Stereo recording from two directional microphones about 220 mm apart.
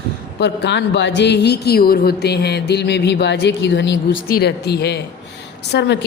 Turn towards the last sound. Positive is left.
turn(degrees=50)  # may be behind; listen again after turning